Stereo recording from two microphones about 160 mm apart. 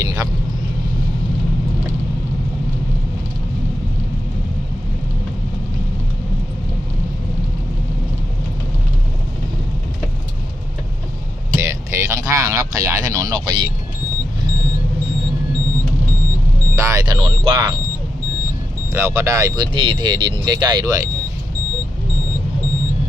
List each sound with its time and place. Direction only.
0.0 s vehicle: 20° right (ahead or behind)
11.5 s a sound: 15° right (ahead or behind)
16.7 s speech: 25° right (ahead or behind)
18.9 s speech: 20° right (ahead or behind)